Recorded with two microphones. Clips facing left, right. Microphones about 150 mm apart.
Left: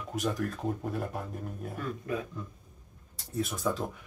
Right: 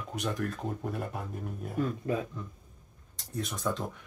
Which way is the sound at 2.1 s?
30° right (ahead or behind).